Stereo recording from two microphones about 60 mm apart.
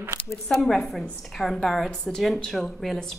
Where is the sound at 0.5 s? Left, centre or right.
Centre.